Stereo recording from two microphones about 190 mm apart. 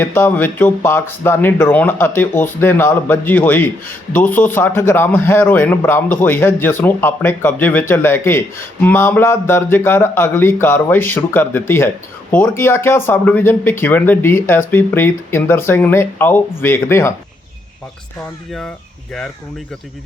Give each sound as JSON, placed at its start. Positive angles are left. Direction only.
{"t": 0.0, "sound": "speech", "side_deg": 10}